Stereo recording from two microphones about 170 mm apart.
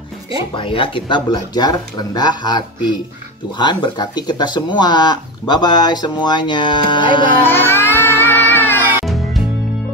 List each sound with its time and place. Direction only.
0.6 s speech: 30° left (ahead or behind)
7.4 s music: 15° left (ahead or behind)